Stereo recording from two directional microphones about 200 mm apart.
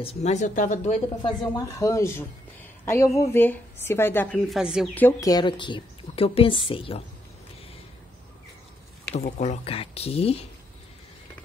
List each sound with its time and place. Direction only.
0.0 s speech: 30° left (ahead or behind)
1.2 s a woman's voice: 20° left (ahead or behind); by 4.8 s 5° right (ahead or behind)
4.9 s a woman's voice: 15° left (ahead or behind)
9.4 s a woman's voice: 30° left (ahead or behind)